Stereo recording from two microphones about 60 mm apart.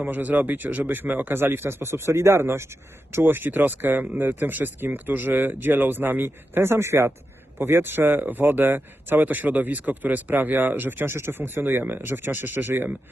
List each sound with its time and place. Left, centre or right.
0.0 s speech: right